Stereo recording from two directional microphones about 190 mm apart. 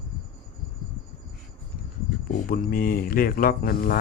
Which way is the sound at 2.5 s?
50° left (ahead or behind).